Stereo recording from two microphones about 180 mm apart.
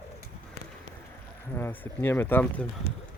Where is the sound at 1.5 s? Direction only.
10° left (ahead or behind).